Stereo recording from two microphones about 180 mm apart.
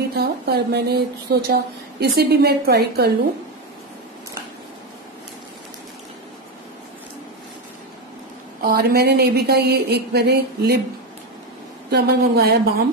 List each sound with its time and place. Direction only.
0.1 s speech: 60° right (ahead or behind)
8.6 s speech: 55° right (ahead or behind)
11.9 s speech: 65° right (ahead or behind)